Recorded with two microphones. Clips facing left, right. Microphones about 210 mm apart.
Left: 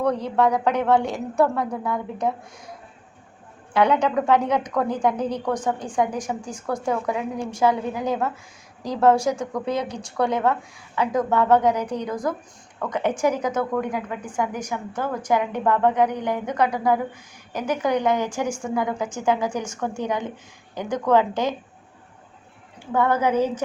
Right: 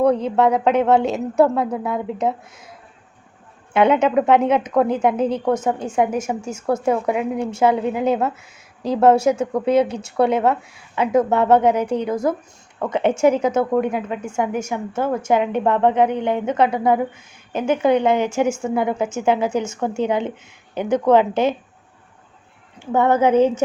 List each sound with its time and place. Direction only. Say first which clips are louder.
0.0 s a woman's voice: right 5 dB; 25° right (ahead or behind)
3.7 s a woman's voice: right 4 dB; 25° right (ahead or behind)
22.8 s a woman's voice: right 5 dB; 25° right (ahead or behind)